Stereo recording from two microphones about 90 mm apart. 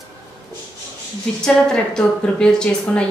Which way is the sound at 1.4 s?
10° left (ahead or behind).